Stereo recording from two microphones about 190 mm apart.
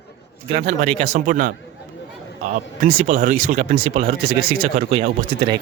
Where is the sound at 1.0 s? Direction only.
45° right (ahead or behind); by 5.5 s 30° right (ahead or behind).